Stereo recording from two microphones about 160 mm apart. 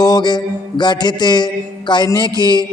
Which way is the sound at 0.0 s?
25° left (ahead or behind).